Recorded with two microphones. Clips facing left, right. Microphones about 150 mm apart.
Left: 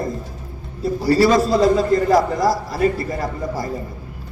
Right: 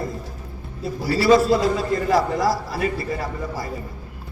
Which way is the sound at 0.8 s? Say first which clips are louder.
Left 7 dB; 40° left (ahead or behind).